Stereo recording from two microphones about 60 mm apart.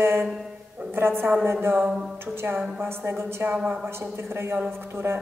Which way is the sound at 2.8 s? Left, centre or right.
Right.